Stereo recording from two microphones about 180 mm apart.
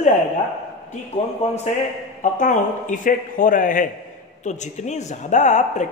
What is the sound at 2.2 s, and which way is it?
A man's voice, 45° left (ahead or behind).